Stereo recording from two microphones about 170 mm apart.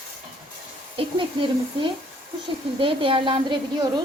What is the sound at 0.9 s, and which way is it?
A woman's voice, 30° right (ahead or behind).